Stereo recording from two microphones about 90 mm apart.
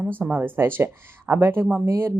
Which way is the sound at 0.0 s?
20° right (ahead or behind).